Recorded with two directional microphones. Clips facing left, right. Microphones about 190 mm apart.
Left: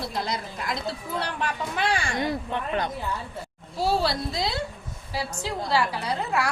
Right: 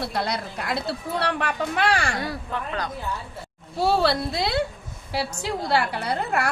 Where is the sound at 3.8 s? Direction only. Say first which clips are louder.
Right 3 dB; 65° right (ahead or behind).